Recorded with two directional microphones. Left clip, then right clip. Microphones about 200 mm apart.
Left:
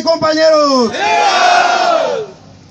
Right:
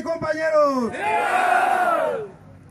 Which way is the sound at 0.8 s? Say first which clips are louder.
Left 10 dB; 50° left (ahead or behind).